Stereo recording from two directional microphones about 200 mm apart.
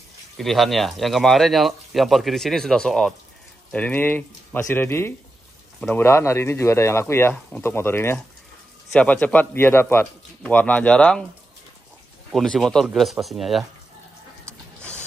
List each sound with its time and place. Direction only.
0.4 s speech: centre (ahead or behind)
12.3 s speech: centre (ahead or behind)